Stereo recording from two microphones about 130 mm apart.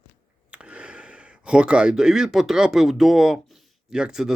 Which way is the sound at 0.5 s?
10° right (ahead or behind).